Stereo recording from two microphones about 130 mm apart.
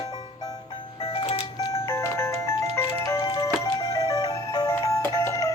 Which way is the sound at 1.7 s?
20° left (ahead or behind).